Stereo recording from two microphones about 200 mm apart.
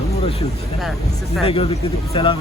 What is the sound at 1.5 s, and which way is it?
Speech, 30° left (ahead or behind).